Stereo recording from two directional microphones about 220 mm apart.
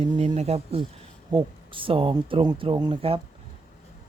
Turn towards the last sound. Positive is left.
turn(degrees=-25)  # may be behind; listen again after turning